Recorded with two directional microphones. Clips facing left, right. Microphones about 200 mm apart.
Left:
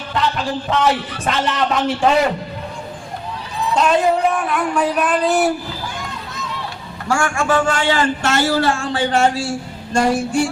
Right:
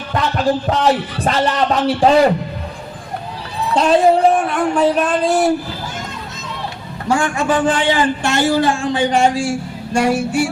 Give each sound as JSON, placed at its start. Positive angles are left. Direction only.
{"t": 1.2, "sound": "a man's voice", "side_deg": -35}
{"t": 3.8, "sound": "speech", "side_deg": -30}
{"t": 7.1, "sound": "a man's voice", "side_deg": -20}